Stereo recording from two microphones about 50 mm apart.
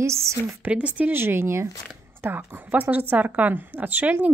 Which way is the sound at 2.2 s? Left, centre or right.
Right.